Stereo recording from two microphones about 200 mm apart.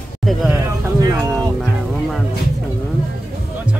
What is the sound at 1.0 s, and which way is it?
Speech, 15° right (ahead or behind).